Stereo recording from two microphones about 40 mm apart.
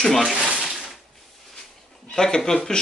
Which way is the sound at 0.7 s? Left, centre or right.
Centre.